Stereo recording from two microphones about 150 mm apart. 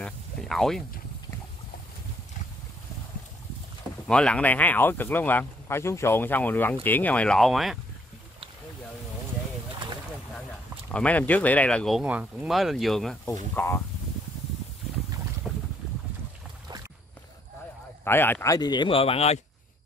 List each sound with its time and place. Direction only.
0.0 s speech: 5° left (ahead or behind)
4.1 s speech: 5° left (ahead or behind)
10.9 s speech: 10° left (ahead or behind)
13.6 s speech: 15° left (ahead or behind)
15.5 s boat: centre (ahead or behind)
18.0 s speech: 15° left (ahead or behind); by 19.4 s 45° left (ahead or behind)